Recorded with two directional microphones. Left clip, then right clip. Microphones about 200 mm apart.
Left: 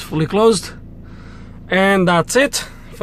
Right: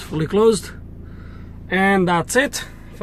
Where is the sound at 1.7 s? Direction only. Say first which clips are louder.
Left 3 dB; 25° left (ahead or behind).